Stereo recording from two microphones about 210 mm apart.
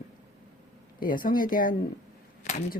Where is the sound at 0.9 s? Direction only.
40° left (ahead or behind).